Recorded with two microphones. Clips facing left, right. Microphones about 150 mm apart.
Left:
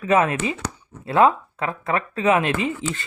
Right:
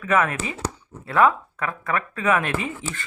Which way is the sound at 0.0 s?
25° left (ahead or behind).